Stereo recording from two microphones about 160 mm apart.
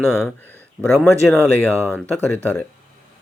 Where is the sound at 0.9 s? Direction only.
15° left (ahead or behind).